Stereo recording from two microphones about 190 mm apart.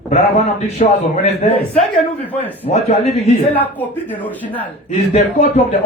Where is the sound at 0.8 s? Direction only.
40° left (ahead or behind).